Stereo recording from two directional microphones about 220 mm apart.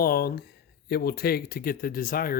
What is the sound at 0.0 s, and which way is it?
Speech, 45° left (ahead or behind).